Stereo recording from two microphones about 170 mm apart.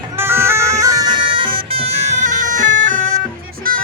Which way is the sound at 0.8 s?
20° right (ahead or behind).